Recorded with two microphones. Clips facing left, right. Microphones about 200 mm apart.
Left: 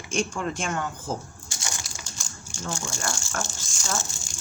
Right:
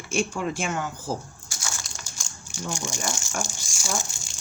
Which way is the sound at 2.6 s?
15° right (ahead or behind).